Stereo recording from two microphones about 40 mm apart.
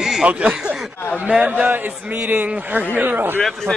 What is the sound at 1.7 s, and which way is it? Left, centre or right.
Speech, right.